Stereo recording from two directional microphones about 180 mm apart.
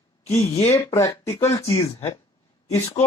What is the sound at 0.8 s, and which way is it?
Speech, 15° left (ahead or behind).